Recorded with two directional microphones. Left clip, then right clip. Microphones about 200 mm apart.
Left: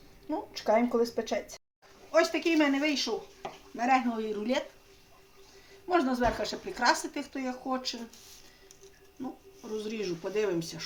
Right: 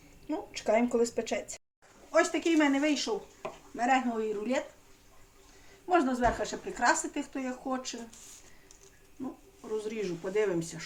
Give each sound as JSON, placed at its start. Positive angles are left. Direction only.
{"t": 0.3, "sound": "speech", "side_deg": 5}
{"t": 5.9, "sound": "speech", "side_deg": 15}
{"t": 10.0, "sound": "speech", "side_deg": 20}